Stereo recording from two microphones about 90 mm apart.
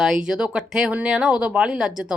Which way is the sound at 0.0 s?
5° right (ahead or behind).